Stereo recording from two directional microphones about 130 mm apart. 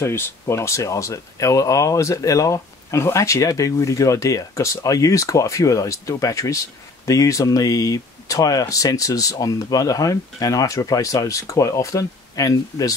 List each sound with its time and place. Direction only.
0.0 s speech: 20° left (ahead or behind)